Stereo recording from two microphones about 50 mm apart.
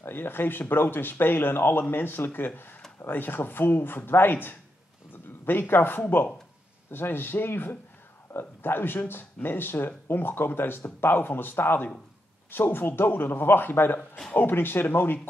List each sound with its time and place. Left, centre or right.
0.0 s speech: left